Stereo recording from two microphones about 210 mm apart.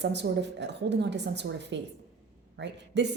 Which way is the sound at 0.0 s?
55° right (ahead or behind).